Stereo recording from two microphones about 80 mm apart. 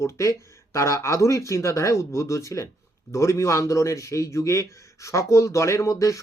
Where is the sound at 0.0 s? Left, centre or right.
Left.